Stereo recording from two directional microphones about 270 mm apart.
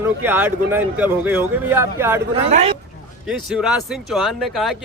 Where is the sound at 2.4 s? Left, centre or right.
Right.